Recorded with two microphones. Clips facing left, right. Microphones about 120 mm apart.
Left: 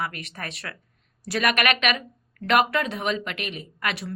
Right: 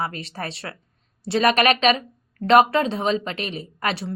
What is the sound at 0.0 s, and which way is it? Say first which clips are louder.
A woman's voice: right 4 dB; 30° right (ahead or behind).